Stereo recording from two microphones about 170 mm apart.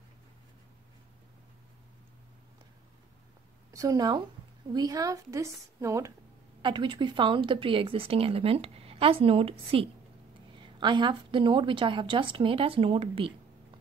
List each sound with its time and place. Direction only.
3.7 s a woman's voice: 20° right (ahead or behind)
6.6 s a woman's voice: 30° right (ahead or behind)